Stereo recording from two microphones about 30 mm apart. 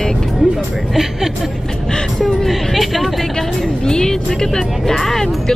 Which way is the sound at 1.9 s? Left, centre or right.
Left.